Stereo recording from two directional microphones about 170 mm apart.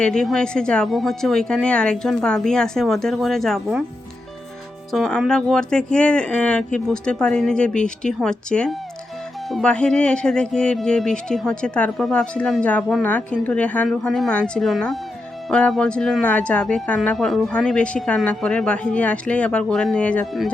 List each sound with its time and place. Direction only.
0.0 s speech: 5° left (ahead or behind)
4.9 s speech: 5° left (ahead or behind)